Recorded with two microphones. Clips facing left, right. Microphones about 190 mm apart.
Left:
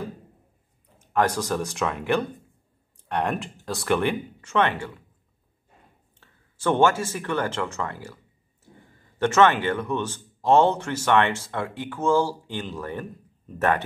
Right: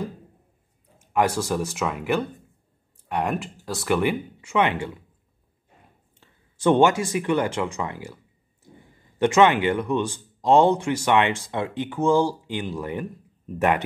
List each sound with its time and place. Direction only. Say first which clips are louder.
1.1 s a man's voice: right 1 dB; 10° right (ahead or behind)
6.1 s speech: right 1 dB; 15° right (ahead or behind)
9.2 s a man's voice: right 2 dB; 15° right (ahead or behind)